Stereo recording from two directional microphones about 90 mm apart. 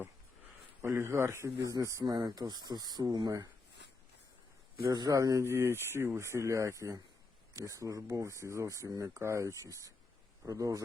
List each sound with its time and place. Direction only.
0.8 s speech: 30° right (ahead or behind)
4.9 s speech: 40° right (ahead or behind)